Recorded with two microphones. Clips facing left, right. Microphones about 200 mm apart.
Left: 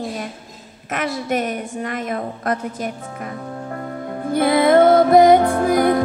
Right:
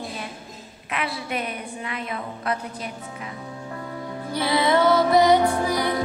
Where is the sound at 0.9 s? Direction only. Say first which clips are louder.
Left 7 dB; 45° left (ahead or behind).